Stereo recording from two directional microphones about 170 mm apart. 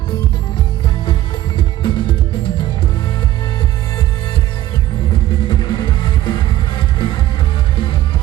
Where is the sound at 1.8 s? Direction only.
30° left (ahead or behind).